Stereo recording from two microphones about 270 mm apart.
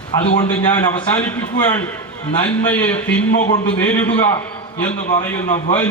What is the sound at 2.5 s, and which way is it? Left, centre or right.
A man's voice, centre.